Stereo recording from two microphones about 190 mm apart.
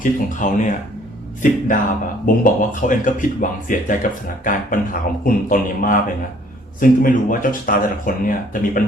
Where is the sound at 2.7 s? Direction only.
45° left (ahead or behind).